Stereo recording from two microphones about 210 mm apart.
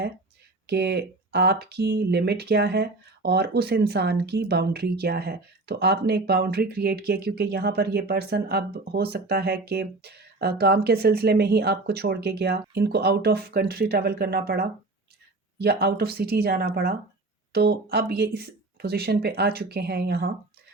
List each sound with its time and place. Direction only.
0.7 s speech: 50° right (ahead or behind)